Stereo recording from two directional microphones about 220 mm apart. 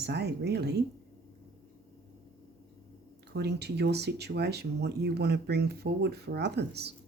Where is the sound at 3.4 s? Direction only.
50° right (ahead or behind).